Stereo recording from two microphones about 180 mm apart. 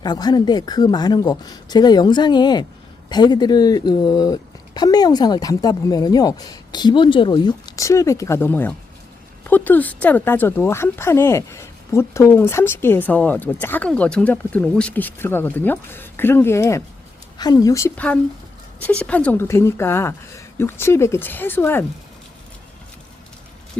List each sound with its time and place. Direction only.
0.0 s speech: 25° left (ahead or behind)